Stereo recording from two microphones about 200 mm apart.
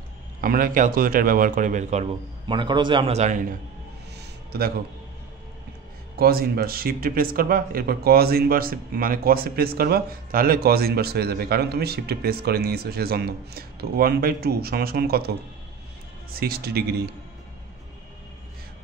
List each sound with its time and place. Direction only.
0.4 s speech: 45° right (ahead or behind)
2.4 s a man's voice: 25° right (ahead or behind)
4.5 s speech: 50° right (ahead or behind)
6.1 s speech: 50° right (ahead or behind)